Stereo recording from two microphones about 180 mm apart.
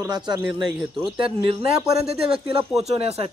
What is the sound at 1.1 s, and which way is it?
Speech, 30° right (ahead or behind).